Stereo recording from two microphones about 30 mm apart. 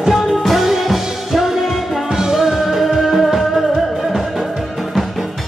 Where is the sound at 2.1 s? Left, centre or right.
Centre.